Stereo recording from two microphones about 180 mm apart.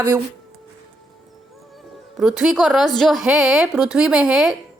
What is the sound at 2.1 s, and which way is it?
A woman's voice, centre (ahead or behind).